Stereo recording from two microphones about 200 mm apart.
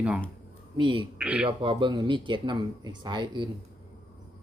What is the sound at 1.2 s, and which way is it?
Speech, 5° right (ahead or behind).